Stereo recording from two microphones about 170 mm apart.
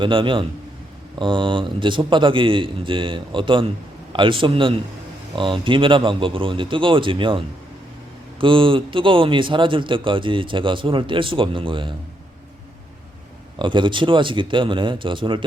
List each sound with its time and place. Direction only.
0.0 s a man's voice: 30° right (ahead or behind)
13.6 s a man's voice: 30° right (ahead or behind)